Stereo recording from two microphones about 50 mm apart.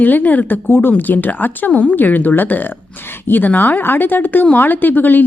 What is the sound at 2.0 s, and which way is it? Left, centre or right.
A woman's voice, left.